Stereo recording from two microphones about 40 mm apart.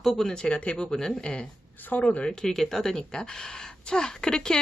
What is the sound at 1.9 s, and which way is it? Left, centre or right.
Speech, left.